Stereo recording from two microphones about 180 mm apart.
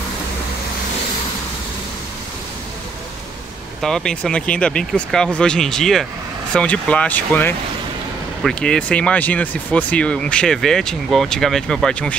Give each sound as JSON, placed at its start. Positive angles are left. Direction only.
{"t": 3.8, "sound": "speech", "side_deg": 5}